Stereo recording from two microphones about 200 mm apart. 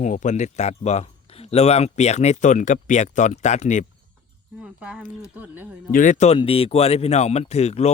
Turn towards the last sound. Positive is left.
turn(degrees=30)  # may be behind; listen again after turning